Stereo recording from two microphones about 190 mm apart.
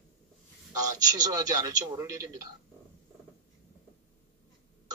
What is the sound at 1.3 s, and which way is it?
Speech, 20° right (ahead or behind).